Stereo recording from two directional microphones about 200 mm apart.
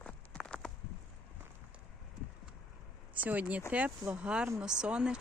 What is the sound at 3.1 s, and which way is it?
Speech, 10° right (ahead or behind).